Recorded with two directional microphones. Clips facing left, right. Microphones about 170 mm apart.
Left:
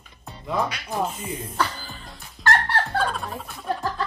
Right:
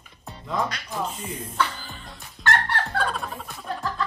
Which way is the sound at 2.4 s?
35° left (ahead or behind).